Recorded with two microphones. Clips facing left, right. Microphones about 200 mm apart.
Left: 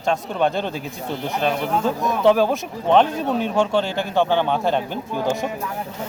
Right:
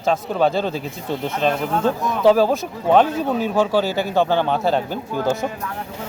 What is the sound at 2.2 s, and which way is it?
Speech, 5° right (ahead or behind).